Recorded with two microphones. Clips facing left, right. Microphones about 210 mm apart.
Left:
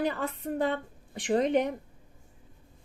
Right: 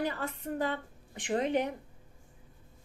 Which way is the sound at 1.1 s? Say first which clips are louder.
Left 5 dB; 35° left (ahead or behind).